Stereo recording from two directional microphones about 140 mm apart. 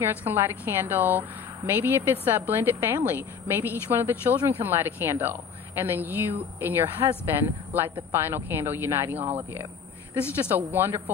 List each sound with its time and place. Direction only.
0.0 s a woman's voice: 15° right (ahead or behind)